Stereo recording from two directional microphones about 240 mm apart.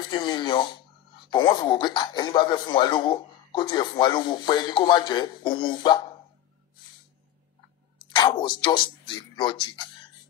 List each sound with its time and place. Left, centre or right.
0.1 s speech: centre
8.1 s speech: centre